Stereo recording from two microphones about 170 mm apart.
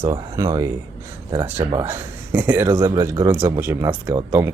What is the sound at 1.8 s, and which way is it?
Speech, 15° right (ahead or behind).